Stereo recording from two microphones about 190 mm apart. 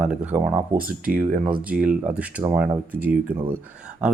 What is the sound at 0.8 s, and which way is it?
Speech, 50° right (ahead or behind).